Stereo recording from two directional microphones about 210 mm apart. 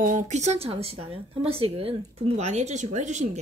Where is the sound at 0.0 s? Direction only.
35° right (ahead or behind).